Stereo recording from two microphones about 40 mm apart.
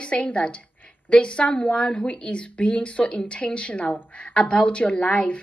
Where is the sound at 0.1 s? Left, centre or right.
Left.